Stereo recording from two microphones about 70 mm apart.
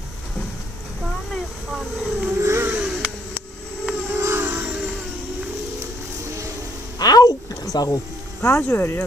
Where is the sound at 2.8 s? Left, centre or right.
Centre.